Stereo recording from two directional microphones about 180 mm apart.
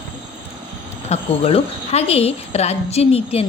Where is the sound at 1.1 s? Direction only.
35° left (ahead or behind).